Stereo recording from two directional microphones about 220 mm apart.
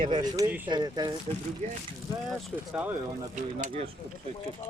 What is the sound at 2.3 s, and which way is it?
Speech, 5° right (ahead or behind).